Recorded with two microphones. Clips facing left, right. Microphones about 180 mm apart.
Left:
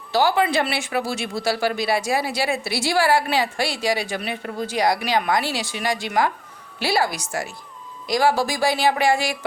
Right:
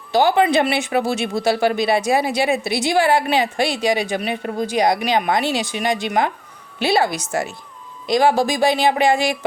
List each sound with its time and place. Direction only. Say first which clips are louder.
0.1 s speech: right 4 dB; 20° right (ahead or behind)